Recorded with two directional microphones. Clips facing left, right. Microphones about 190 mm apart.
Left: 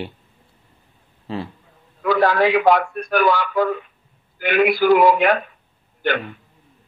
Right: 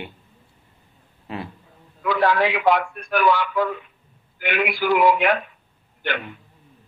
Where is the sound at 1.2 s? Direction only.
30° left (ahead or behind).